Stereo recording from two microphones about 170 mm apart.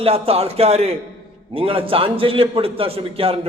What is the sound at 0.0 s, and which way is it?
A man's voice, 35° right (ahead or behind).